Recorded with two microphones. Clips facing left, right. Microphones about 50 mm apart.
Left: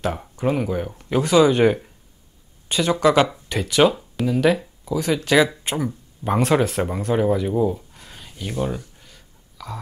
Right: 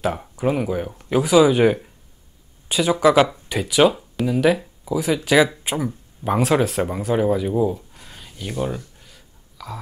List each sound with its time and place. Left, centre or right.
0.0 s speech: centre